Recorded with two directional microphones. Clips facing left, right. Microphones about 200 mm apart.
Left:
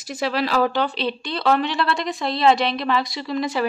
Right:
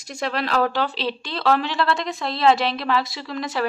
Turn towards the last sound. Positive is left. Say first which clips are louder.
# left 4 dB
turn(degrees=0)  # may be behind; listen again after turning